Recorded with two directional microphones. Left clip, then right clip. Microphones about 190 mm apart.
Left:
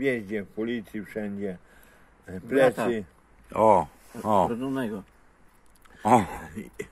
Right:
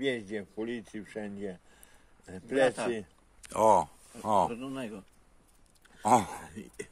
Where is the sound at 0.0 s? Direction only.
10° right (ahead or behind).